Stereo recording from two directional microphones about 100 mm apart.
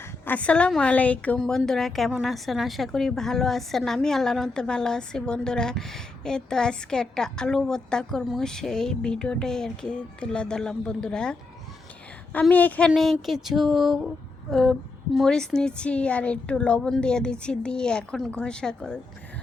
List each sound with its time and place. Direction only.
0.3 s speech: 15° left (ahead or behind)
1.4 s speech: 5° left (ahead or behind)
12.9 s speech: centre (ahead or behind)